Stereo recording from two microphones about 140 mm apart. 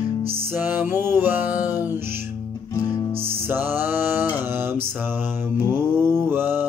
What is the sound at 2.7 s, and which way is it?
Music, 25° left (ahead or behind).